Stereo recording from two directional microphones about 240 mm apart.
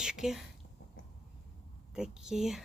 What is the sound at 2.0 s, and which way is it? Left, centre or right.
Speech, centre.